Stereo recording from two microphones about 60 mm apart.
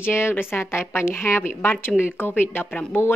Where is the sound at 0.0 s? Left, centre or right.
Left.